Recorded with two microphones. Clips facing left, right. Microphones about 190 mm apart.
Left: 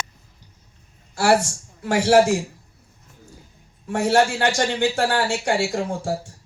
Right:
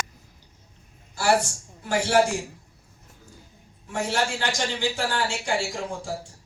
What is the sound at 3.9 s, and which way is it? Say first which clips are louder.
Speech: left 8 dB; 65° left (ahead or behind).